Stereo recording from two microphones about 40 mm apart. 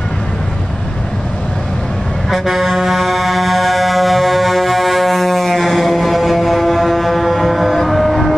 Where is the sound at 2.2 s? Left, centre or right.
Centre.